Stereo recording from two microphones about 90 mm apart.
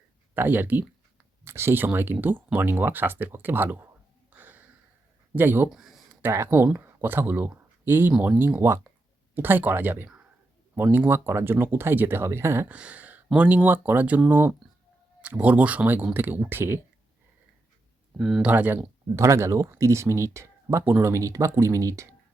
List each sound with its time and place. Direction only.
0.3 s speech: 20° right (ahead or behind)
4.4 s a sound: 20° right (ahead or behind)
5.3 s speech: 25° right (ahead or behind)
5.6 s speech: 5° right (ahead or behind)
6.3 s speech: 25° right (ahead or behind)
12.7 s a sound: 15° right (ahead or behind)
13.3 s speech: 15° right (ahead or behind)
18.2 s speech: 5° right (ahead or behind)
18.5 s speech: 20° right (ahead or behind)
19.1 s speech: 35° right (ahead or behind)